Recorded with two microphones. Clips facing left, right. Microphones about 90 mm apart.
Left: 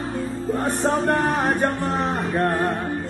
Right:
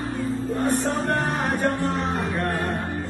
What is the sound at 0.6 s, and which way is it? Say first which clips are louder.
Music: left 3 dB; 55° left (ahead or behind).